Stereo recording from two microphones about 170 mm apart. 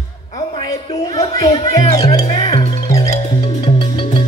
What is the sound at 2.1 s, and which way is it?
Music, 30° left (ahead or behind).